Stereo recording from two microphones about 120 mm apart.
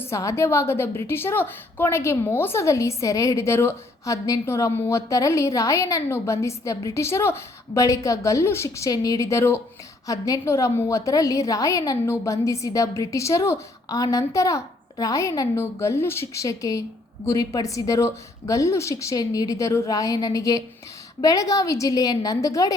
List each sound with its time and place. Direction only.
0.0 s a woman's voice: 25° left (ahead or behind)